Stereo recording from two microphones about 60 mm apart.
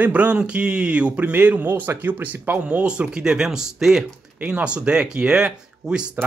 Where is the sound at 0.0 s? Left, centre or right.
Right.